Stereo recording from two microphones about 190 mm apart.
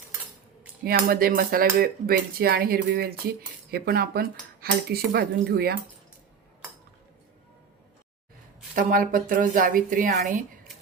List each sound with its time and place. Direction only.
0.9 s speech: 50° right (ahead or behind)
3.7 s cutlery: 55° right (ahead or behind)
8.7 s speech: 45° right (ahead or behind)